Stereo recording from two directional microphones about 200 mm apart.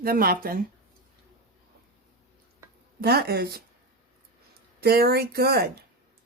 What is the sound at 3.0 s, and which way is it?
Speech, 50° right (ahead or behind).